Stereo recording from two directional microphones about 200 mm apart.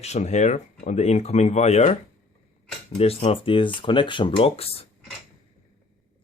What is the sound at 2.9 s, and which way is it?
Speech, 30° left (ahead or behind).